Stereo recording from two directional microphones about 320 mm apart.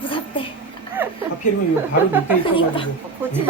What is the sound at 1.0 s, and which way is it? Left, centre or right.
Speech, centre.